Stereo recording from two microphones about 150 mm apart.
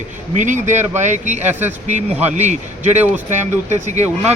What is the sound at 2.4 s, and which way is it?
Speech, 50° right (ahead or behind).